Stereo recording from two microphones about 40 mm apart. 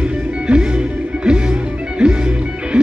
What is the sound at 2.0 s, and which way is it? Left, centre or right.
Music, centre.